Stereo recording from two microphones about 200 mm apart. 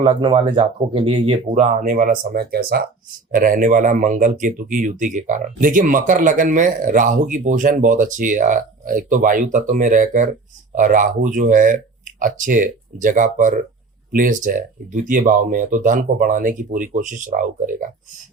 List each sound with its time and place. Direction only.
0.0 s speech: 25° right (ahead or behind); by 17.8 s 40° right (ahead or behind)